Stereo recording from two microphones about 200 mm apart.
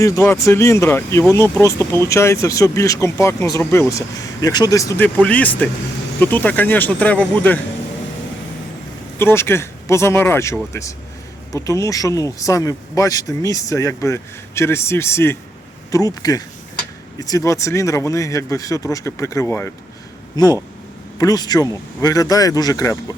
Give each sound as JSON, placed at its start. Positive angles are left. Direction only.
{"t": 0.0, "sound": "speech", "side_deg": 15}
{"t": 9.1, "sound": "speech", "side_deg": 10}